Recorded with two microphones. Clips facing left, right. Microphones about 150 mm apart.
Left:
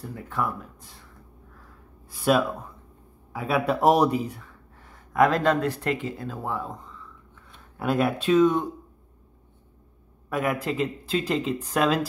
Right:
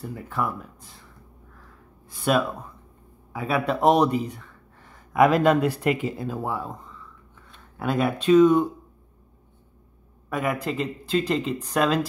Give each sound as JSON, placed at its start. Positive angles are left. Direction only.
{"t": 0.0, "sound": "speech", "side_deg": 0}
{"t": 2.0, "sound": "speech", "side_deg": 0}
{"t": 5.1, "sound": "speech", "side_deg": -10}
{"t": 7.8, "sound": "speech", "side_deg": 0}
{"t": 10.3, "sound": "speech", "side_deg": 0}